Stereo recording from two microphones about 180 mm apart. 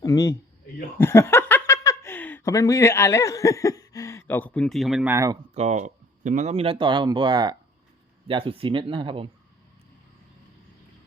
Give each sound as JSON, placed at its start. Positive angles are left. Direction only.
{"t": 0.0, "sound": "a man's voice", "side_deg": 15}
{"t": 0.9, "sound": "a sound", "side_deg": 15}
{"t": 5.0, "sound": "speech", "side_deg": -15}
{"t": 5.5, "sound": "speech", "side_deg": -40}